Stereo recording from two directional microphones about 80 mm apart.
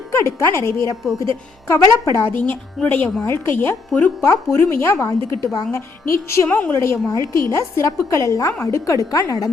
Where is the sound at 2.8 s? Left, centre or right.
Centre.